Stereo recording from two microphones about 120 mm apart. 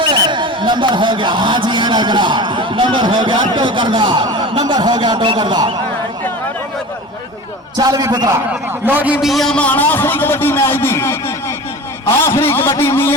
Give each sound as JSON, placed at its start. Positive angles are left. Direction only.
{"t": 0.0, "sound": "a man's voice", "side_deg": -40}
{"t": 7.8, "sound": "a man's voice", "side_deg": -30}
{"t": 8.9, "sound": "a man's voice", "side_deg": -15}